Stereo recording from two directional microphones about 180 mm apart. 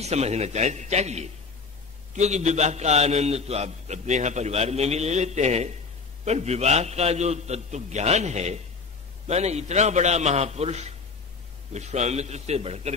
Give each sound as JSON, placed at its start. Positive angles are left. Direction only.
{"t": 0.0, "sound": "a man's voice", "side_deg": -35}